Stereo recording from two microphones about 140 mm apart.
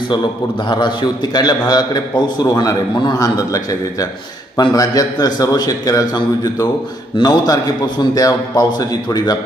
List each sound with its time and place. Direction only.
0.7 s a man's voice: 30° left (ahead or behind)